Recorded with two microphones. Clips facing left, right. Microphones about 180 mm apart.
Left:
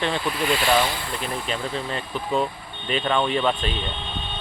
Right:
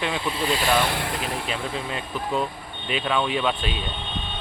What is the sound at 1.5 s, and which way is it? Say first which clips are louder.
Speech: left 1 dB; 5° right (ahead or behind).